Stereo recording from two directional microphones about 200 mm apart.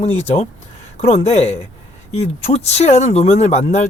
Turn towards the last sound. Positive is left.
turn(degrees=35)  # may be behind; listen again after turning